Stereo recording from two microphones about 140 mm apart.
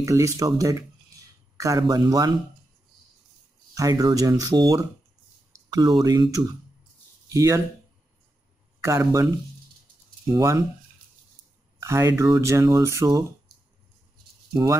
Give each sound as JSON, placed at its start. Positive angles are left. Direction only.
{"t": 0.0, "sound": "speech", "side_deg": -20}
{"t": 3.7, "sound": "speech", "side_deg": -25}
{"t": 8.8, "sound": "speech", "side_deg": -20}
{"t": 10.3, "sound": "speech", "side_deg": -25}
{"t": 11.8, "sound": "speech", "side_deg": -25}